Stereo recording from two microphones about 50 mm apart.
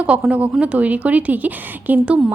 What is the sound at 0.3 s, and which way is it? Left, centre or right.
A woman's voice, right.